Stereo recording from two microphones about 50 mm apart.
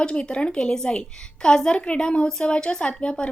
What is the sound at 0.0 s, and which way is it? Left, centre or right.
A woman's voice, centre.